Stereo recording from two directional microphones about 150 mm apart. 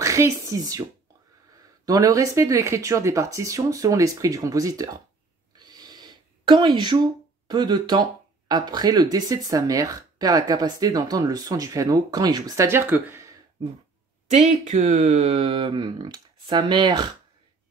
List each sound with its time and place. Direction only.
0.0 s speech: 20° right (ahead or behind)
1.9 s speech: 25° right (ahead or behind)
5.6 s a sound: 25° right (ahead or behind)
7.4 s speech: 30° right (ahead or behind)
14.4 s speech: 55° right (ahead or behind); by 17.1 s 30° right (ahead or behind)